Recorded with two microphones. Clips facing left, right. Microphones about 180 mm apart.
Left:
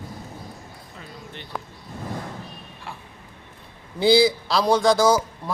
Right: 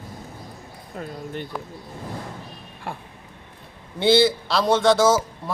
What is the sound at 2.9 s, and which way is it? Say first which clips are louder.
Speech: right 6 dB; 50° right (ahead or behind).